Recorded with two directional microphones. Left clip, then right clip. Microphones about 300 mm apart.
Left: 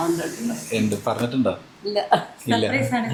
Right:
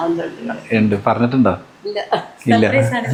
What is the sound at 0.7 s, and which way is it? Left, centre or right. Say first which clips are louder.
Speech: right 8 dB; right.